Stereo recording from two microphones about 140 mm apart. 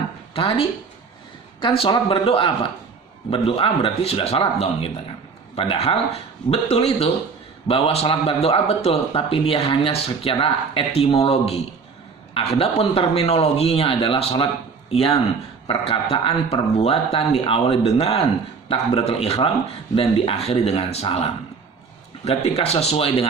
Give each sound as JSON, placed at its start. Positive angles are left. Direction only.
{"t": 1.6, "sound": "a man's voice", "side_deg": 35}